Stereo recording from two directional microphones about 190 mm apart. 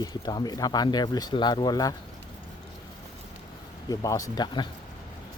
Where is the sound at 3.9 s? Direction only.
20° left (ahead or behind).